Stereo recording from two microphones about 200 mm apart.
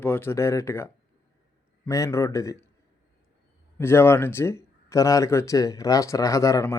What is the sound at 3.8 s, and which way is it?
Speech, 10° left (ahead or behind).